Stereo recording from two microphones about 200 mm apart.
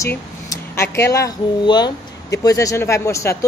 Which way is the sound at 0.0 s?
15° left (ahead or behind).